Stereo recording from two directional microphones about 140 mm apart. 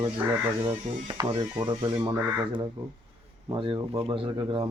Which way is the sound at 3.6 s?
40° right (ahead or behind).